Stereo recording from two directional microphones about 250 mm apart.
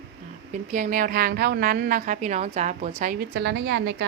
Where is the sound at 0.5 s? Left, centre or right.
Right.